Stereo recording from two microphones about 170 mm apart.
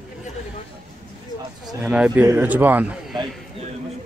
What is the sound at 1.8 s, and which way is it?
Speech, 5° right (ahead or behind).